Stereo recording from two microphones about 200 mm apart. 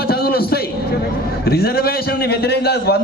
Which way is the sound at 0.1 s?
50° left (ahead or behind).